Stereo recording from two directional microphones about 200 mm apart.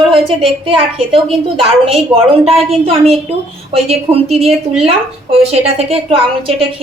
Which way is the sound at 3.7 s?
30° right (ahead or behind).